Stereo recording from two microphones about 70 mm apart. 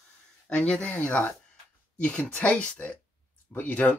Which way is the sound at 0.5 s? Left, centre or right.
Centre.